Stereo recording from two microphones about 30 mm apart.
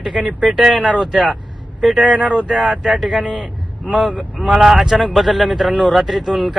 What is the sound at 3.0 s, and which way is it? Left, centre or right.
Speech, centre.